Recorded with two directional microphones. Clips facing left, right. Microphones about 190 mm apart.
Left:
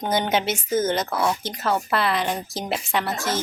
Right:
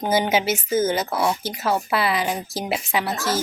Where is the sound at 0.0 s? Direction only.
5° right (ahead or behind).